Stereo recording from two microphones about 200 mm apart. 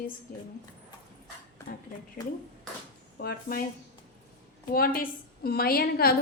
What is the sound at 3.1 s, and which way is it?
Speech, 50° left (ahead or behind).